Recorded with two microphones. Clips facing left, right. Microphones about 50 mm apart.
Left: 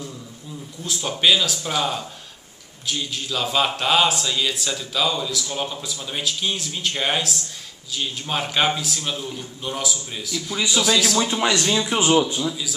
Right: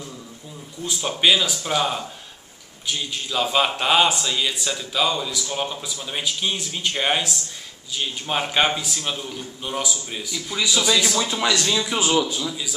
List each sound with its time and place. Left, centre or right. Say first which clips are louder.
0.8 s a man's voice: even; centre
11.1 s speech: left 1 dB; centre